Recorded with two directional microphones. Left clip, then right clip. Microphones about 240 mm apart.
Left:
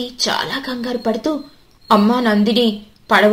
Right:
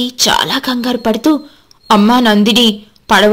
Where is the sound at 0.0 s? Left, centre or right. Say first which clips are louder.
Right 7 dB; right.